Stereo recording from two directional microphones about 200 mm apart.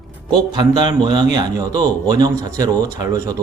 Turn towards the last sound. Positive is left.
turn(degrees=-15)  # may be behind; listen again after turning